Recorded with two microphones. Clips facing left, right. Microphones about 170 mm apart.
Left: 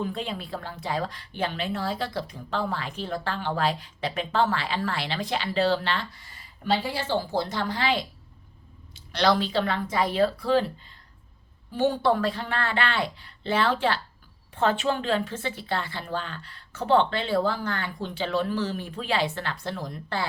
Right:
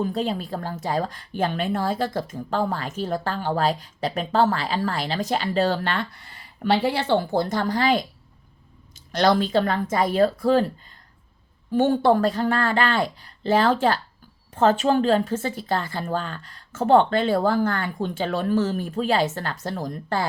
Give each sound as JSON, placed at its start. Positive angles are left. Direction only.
{"t": 0.0, "sound": "a woman's voice", "side_deg": -40}